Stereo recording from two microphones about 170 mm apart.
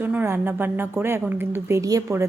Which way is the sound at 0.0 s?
10° right (ahead or behind).